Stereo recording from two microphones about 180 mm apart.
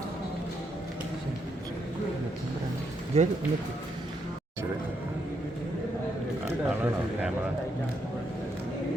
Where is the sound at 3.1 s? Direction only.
35° right (ahead or behind).